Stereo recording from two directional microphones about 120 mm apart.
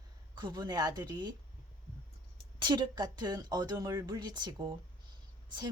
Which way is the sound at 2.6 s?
40° right (ahead or behind).